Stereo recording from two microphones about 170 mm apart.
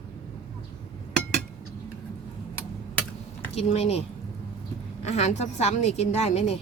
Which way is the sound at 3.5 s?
40° left (ahead or behind).